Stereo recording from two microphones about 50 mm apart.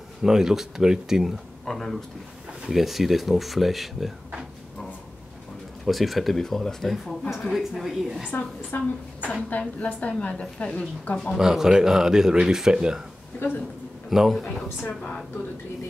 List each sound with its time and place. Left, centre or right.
0.2 s speech: centre
1.7 s speech: centre
5.9 s speech: centre
8.3 s a woman's voice: left
11.3 s speech: centre
13.4 s speech: left
14.1 s speech: centre
14.9 s a woman's voice: centre